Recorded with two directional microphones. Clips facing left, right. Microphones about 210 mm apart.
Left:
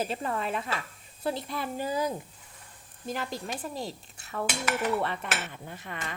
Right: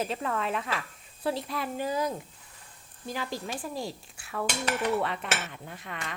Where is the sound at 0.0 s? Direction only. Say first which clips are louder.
Even; 5° left (ahead or behind).